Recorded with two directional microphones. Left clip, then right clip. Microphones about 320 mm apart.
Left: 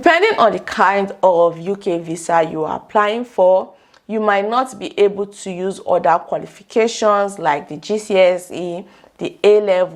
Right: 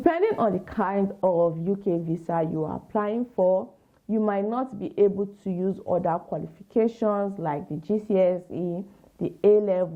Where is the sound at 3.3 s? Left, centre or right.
Left.